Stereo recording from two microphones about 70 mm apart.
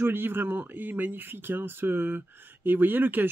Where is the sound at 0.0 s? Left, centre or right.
Right.